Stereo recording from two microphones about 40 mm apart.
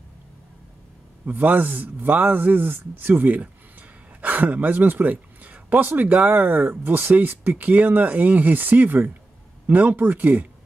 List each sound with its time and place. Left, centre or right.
1.2 s speech: right